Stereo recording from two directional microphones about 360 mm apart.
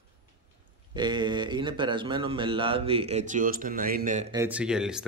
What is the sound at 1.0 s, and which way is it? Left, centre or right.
A man's voice, centre.